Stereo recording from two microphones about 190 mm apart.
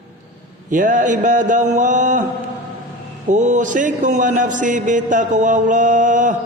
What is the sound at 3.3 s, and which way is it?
A man's voice, 40° right (ahead or behind).